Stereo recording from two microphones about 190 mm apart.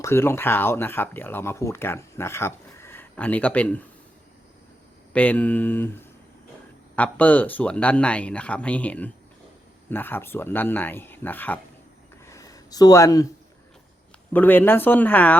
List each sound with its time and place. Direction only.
0.0 s speech: 15° left (ahead or behind)
5.1 s speech: 10° left (ahead or behind)
6.9 s speech: 10° left (ahead or behind)
12.2 s a sound: 15° left (ahead or behind)
14.3 s speech: 10° left (ahead or behind)